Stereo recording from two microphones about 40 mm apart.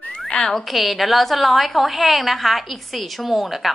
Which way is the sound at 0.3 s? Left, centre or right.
Centre.